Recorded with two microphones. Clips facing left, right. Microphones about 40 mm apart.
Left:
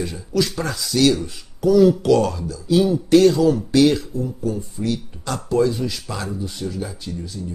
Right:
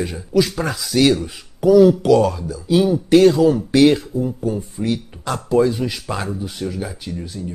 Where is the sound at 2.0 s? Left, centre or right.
Centre; by 7.2 s right.